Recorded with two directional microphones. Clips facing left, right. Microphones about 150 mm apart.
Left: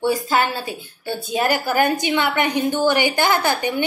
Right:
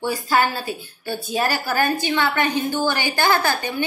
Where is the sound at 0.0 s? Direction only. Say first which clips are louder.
Left 1 dB; 20° left (ahead or behind).